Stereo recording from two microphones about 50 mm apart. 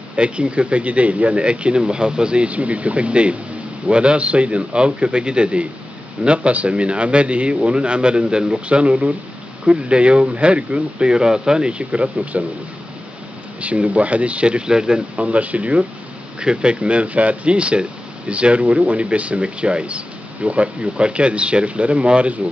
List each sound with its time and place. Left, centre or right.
0.1 s speech: right
13.6 s speech: right